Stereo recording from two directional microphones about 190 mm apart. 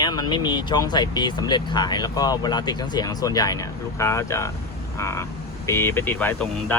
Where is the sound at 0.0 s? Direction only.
20° left (ahead or behind).